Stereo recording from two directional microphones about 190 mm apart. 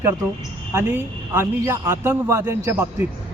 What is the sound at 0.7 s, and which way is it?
A man's voice, 10° right (ahead or behind).